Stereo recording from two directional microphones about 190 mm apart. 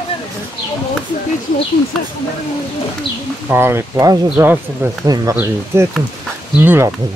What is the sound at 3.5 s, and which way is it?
Speech, 10° right (ahead or behind).